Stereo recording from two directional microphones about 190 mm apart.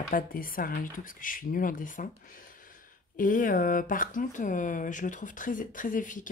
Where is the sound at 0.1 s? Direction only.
50° left (ahead or behind).